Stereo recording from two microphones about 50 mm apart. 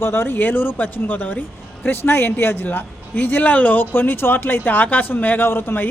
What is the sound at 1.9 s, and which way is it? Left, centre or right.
Speech, left.